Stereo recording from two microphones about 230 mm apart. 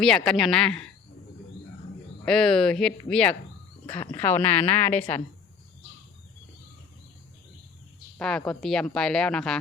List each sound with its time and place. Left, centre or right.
0.0 s speech: centre
2.2 s speech: centre
8.2 s speech: centre